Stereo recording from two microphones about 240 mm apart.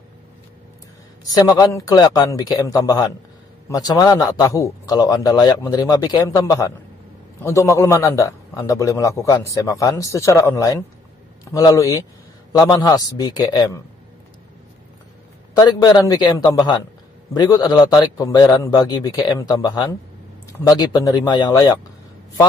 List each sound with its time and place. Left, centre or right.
1.3 s a man's voice: centre
15.5 s a man's voice: centre